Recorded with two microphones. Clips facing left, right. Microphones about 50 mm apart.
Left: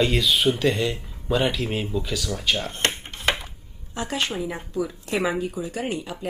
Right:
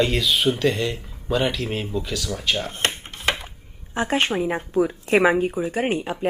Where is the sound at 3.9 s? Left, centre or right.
Right.